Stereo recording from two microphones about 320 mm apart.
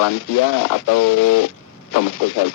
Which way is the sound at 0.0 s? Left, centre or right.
Left.